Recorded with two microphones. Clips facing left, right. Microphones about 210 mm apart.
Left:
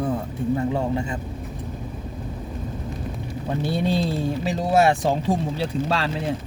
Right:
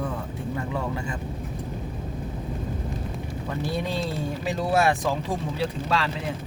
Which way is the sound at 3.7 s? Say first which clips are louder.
Left 7 dB; 30° left (ahead or behind).